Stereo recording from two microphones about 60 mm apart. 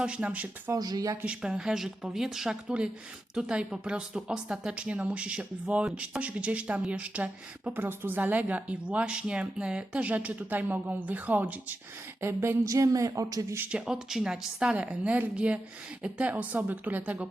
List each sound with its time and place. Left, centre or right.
0.0 s speech: right
0.7 s speech: right
1.2 s a woman's voice: centre
7.7 s speech: right
12.2 s a sound: right
12.6 s a woman's voice: right
13.7 s a woman's voice: centre